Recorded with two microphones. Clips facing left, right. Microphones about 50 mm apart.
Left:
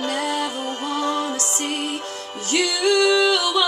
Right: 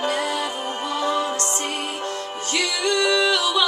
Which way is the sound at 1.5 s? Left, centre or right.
Right.